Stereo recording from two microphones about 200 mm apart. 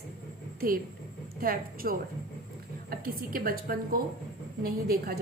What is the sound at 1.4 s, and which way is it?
A woman's voice, 45° right (ahead or behind).